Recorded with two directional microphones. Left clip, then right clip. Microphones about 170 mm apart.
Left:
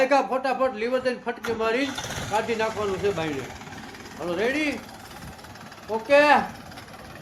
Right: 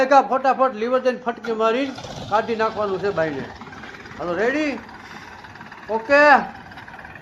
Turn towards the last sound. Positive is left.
turn(degrees=-5)  # may be behind; listen again after turning